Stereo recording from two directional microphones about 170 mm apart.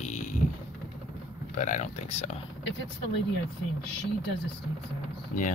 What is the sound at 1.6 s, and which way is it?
Speech, 45° left (ahead or behind).